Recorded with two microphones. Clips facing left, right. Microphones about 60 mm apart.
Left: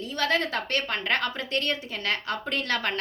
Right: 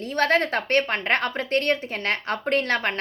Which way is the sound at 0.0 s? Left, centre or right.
Right.